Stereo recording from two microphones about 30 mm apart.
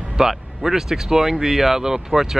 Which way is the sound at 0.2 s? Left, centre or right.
Centre.